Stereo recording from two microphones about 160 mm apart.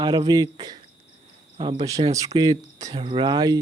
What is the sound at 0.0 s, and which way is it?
Speech, 30° right (ahead or behind).